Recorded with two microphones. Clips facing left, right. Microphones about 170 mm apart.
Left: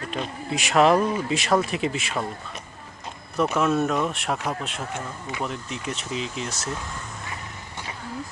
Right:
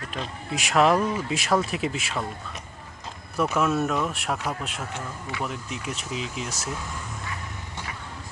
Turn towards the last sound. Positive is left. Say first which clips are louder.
# left 1 dB
turn(degrees=-5)  # may be behind; listen again after turning